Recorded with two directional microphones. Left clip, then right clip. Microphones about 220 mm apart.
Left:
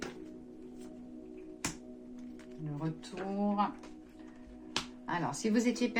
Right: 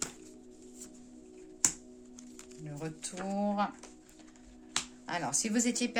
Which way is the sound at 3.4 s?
50° right (ahead or behind).